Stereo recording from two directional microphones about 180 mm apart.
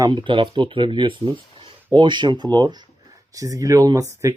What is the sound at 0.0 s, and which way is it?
Speech, 25° right (ahead or behind).